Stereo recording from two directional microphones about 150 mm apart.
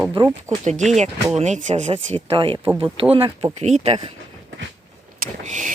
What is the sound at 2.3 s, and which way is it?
Speech, 35° right (ahead or behind).